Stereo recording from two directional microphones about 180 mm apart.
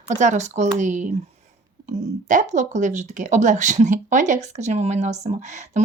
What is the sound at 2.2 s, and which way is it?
Speech, 45° right (ahead or behind).